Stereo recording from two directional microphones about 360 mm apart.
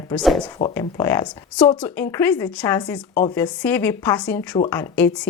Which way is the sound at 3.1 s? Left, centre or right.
Left.